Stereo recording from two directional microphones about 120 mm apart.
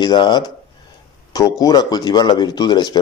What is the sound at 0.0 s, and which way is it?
Speech, 40° left (ahead or behind).